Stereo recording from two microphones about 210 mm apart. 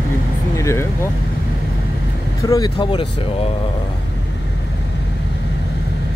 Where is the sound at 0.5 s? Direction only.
15° left (ahead or behind).